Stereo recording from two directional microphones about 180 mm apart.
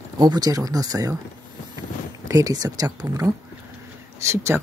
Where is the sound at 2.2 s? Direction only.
20° right (ahead or behind).